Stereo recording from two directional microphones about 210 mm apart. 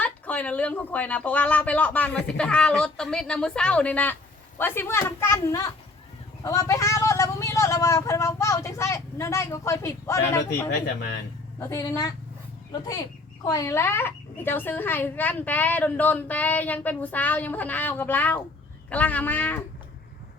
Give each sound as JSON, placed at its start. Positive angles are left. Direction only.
{"t": 0.0, "sound": "speech", "side_deg": 5}